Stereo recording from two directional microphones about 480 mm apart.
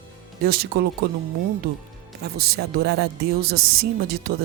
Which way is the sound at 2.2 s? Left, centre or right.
Centre.